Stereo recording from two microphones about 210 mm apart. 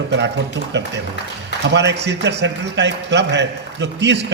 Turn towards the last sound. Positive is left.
turn(degrees=-55)  # may be behind; listen again after turning